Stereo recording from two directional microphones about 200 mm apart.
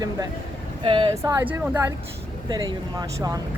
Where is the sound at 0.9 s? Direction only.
25° right (ahead or behind).